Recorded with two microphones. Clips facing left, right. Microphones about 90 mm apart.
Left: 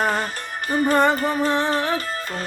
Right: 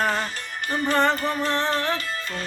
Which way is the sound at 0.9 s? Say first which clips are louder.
Left 2 dB; 15° left (ahead or behind).